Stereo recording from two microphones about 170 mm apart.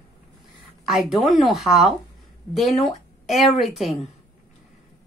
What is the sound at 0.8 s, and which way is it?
A woman's voice, centre (ahead or behind).